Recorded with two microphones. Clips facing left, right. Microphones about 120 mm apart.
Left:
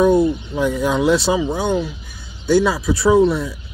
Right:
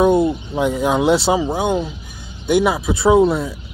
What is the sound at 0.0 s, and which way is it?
Speech, 25° right (ahead or behind).